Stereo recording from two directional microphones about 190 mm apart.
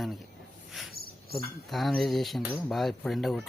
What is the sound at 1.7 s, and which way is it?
Speech, centre (ahead or behind).